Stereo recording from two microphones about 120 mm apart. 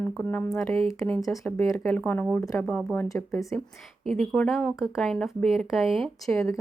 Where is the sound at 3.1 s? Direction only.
25° left (ahead or behind).